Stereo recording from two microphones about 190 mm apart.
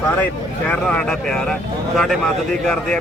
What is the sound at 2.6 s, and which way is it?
Speech, 5° left (ahead or behind).